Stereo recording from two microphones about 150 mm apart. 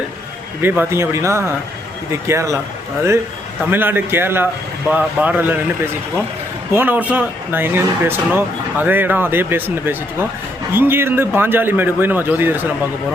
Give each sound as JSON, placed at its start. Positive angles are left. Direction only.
{"t": 0.6, "sound": "speech", "side_deg": -15}
{"t": 3.7, "sound": "speech", "side_deg": -15}